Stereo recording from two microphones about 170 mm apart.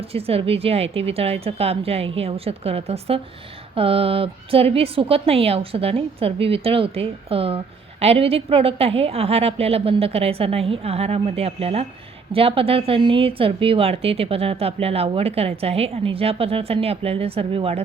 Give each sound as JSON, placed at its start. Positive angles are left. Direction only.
{"t": 0.1, "sound": "a woman's voice", "side_deg": -35}